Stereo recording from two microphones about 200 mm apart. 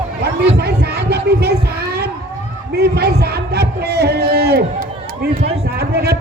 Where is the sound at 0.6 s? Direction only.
55° right (ahead or behind).